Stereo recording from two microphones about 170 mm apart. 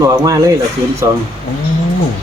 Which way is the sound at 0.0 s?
20° right (ahead or behind).